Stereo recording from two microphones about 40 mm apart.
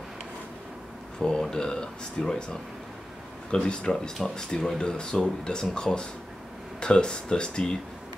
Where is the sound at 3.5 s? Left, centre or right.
Left.